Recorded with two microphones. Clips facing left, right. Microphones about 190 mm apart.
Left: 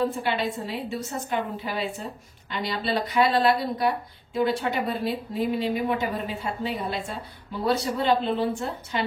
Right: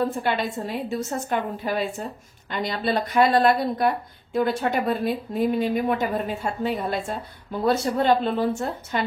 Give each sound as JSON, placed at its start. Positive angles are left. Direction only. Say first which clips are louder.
{"t": 0.0, "sound": "a woman's voice", "louder": "right 1 dB", "side_deg": -45}